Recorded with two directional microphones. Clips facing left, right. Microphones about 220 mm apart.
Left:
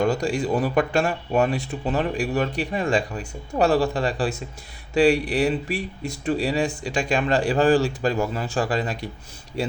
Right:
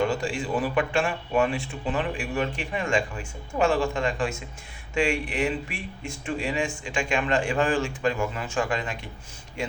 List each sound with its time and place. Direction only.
0.0 s speech: 40° left (ahead or behind)